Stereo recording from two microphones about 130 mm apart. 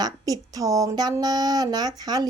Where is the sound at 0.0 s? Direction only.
30° right (ahead or behind).